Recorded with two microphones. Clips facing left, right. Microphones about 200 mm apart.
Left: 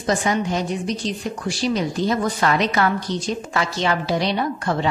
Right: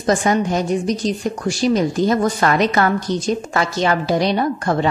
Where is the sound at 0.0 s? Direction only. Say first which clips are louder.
Right 4 dB; 45° right (ahead or behind).